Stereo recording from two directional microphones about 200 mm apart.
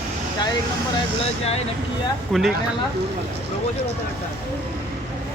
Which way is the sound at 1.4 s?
30° left (ahead or behind).